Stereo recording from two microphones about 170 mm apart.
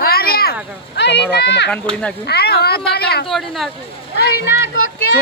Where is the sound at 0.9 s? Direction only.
90° left.